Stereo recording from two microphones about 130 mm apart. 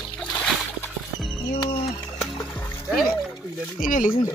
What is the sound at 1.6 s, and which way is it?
Bird, 45° left (ahead or behind).